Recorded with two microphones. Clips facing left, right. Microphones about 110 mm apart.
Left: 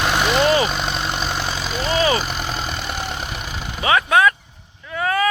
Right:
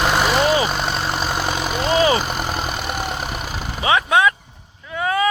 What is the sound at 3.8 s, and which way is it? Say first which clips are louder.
Vehicle: left 1 dB; 15° right (ahead or behind).